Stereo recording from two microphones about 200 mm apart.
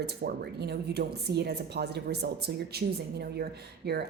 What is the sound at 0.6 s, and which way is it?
A woman's voice, 55° right (ahead or behind).